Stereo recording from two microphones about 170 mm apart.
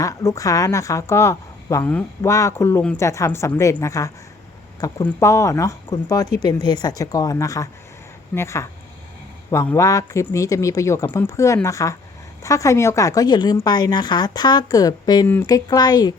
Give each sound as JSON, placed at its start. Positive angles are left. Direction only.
{"t": 0.0, "sound": "a woman's voice", "side_deg": 20}